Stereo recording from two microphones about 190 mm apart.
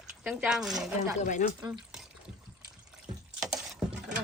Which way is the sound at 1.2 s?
40° left (ahead or behind).